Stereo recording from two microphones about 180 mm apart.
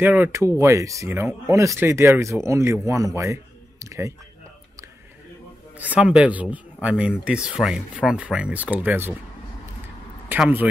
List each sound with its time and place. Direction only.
0.0 s speech: 10° right (ahead or behind)
3.8 s a sound: 15° right (ahead or behind)
5.8 s speech: 5° right (ahead or behind)
10.2 s speech: 10° right (ahead or behind)